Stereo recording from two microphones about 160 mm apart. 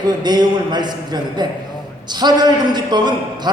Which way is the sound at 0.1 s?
25° right (ahead or behind).